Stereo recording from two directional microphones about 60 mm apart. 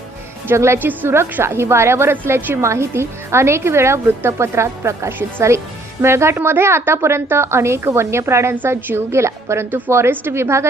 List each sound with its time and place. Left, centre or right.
0.5 s a woman's voice: right
0.8 s a woman's voice: right
8.5 s a woman's voice: right